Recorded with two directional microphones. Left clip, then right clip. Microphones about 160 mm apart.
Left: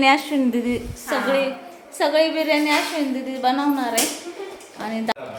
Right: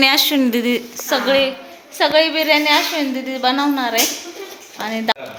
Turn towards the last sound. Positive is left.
turn(degrees=-20)  # may be behind; listen again after turning